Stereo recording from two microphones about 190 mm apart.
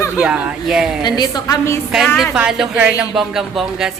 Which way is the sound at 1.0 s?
20° left (ahead or behind).